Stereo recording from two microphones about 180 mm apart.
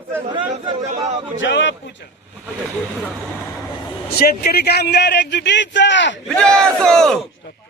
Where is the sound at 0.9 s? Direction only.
35° right (ahead or behind).